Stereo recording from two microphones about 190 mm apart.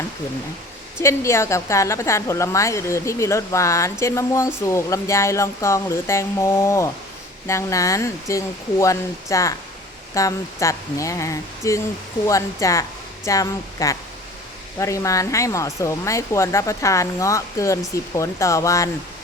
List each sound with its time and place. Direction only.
0.9 s speech: 15° left (ahead or behind)